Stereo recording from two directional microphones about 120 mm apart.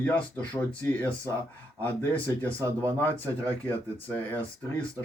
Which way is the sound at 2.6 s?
25° right (ahead or behind).